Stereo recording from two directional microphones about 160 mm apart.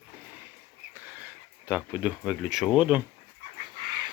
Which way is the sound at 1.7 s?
10° right (ahead or behind).